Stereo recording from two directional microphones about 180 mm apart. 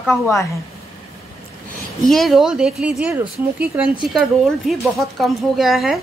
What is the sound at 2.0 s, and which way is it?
A woman's voice, centre (ahead or behind).